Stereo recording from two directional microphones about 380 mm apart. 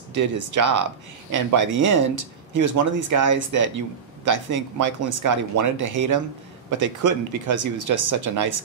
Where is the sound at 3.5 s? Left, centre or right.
Right.